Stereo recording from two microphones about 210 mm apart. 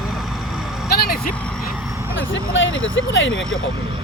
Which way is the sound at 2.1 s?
65° left (ahead or behind).